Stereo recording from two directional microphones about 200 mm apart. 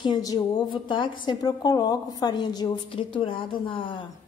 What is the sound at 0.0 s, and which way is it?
A woman's voice, 20° left (ahead or behind).